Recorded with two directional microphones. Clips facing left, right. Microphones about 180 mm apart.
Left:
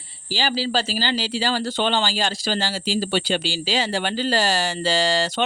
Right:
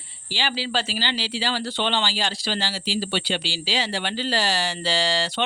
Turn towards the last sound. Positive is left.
turn(degrees=45)  # may be behind; listen again after turning